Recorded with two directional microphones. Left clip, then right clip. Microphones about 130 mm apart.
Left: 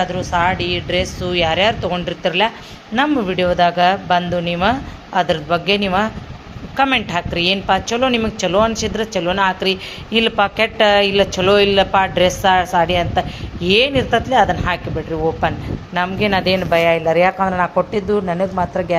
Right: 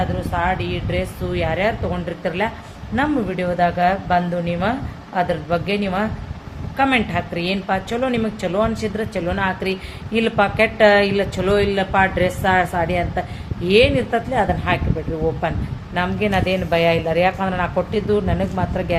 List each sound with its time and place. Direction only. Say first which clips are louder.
0.0 s a woman's voice: left 5 dB; 30° left (ahead or behind)
16.0 s a woman's voice: left 3 dB; 30° left (ahead or behind)